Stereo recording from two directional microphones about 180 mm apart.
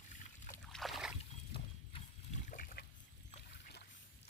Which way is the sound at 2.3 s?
45° left (ahead or behind).